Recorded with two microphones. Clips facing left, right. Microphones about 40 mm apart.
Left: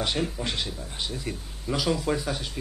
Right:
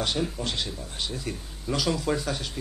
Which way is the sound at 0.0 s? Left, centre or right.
Centre.